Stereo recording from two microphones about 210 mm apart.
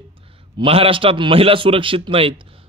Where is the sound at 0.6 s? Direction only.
25° right (ahead or behind).